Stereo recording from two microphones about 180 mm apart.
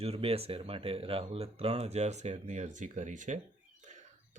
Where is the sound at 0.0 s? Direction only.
35° right (ahead or behind).